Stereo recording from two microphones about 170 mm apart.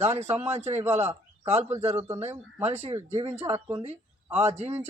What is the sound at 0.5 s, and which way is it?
Speech, 40° right (ahead or behind).